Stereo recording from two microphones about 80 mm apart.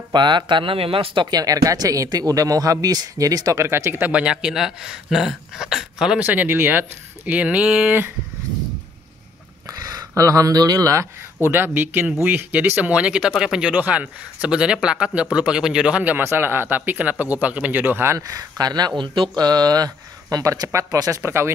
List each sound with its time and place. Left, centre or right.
0.1 s speech: right
1.3 s speech: right
3.6 s speech: right
4.1 s speech: centre
6.1 s speech: right
9.7 s speech: right
11.3 s speech: right
18.1 s speech: right
21.2 s speech: right